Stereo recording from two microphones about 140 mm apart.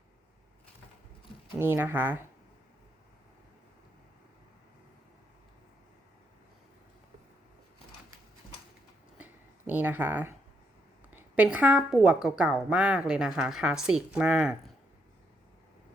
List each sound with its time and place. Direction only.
1.5 s a woman's voice: 15° right (ahead or behind)
9.1 s a sound: 10° right (ahead or behind)
11.1 s a woman's voice: 10° right (ahead or behind)